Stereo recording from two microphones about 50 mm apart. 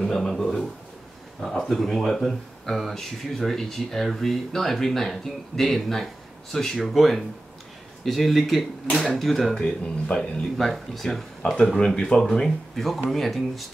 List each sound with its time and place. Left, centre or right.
0.0 s speech: centre
10.6 s speech: centre
11.6 s speech: centre
12.4 s speech: centre